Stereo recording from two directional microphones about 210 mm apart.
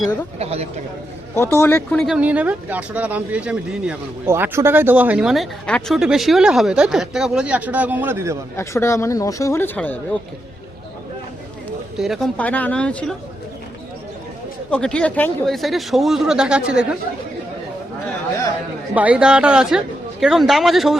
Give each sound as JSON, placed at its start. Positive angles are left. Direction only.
{"t": 0.3, "sound": "speech", "side_deg": -30}
{"t": 1.4, "sound": "speech", "side_deg": 10}
{"t": 8.5, "sound": "speech", "side_deg": 15}
{"t": 11.9, "sound": "speech", "side_deg": 0}
{"t": 14.7, "sound": "speech", "side_deg": 5}
{"t": 18.9, "sound": "speech", "side_deg": -5}